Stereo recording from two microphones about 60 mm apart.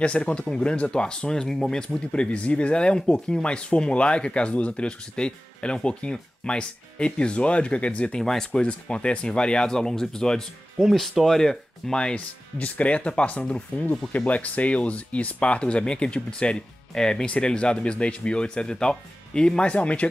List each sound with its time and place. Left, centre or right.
0.0 s speech: centre
10.8 s speech: centre; by 20.1 s left